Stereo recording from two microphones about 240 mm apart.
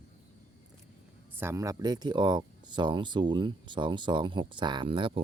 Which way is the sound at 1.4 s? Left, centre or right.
Centre.